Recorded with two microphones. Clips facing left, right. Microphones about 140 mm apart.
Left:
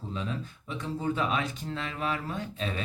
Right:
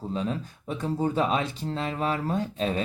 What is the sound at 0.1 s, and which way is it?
Speech, 40° right (ahead or behind).